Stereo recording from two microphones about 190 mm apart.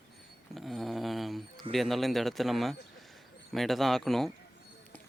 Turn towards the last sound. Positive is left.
turn(degrees=0)  # may be behind; listen again after turning